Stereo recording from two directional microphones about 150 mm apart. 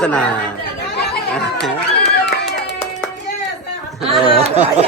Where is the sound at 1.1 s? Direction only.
90° left.